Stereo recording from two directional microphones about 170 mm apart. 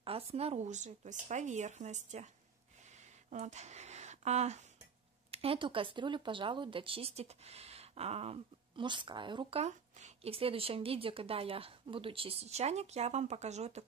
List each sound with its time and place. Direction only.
0.0 s speech: 35° right (ahead or behind)
3.3 s speech: 45° right (ahead or behind)